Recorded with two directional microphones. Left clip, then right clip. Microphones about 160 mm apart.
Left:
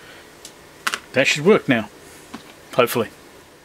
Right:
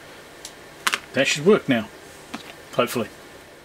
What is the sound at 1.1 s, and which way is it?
Speech, 20° left (ahead or behind).